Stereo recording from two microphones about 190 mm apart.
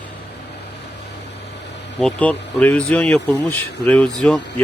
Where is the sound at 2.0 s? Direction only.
5° left (ahead or behind).